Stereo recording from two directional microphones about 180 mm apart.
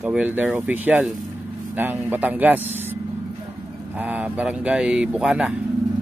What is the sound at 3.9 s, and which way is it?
Speech, 10° right (ahead or behind).